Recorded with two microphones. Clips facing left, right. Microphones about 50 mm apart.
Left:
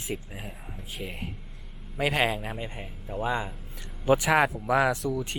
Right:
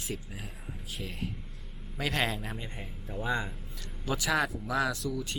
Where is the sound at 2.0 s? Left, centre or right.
Centre.